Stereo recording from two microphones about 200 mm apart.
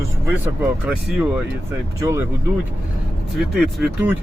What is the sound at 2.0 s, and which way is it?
Speech, 15° right (ahead or behind).